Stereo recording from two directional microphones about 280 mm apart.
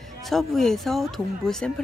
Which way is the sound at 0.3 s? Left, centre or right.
Centre.